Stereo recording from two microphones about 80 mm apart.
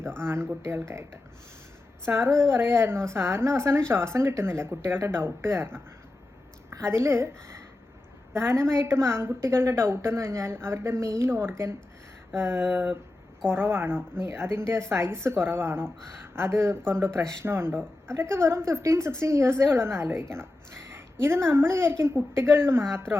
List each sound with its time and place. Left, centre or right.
0.2 s a woman's voice: right